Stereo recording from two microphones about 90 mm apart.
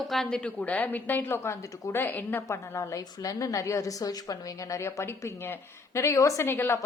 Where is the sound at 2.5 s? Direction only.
35° left (ahead or behind).